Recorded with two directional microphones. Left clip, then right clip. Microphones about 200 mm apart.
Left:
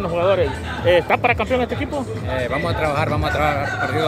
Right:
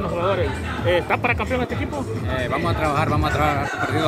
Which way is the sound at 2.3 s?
10° left (ahead or behind).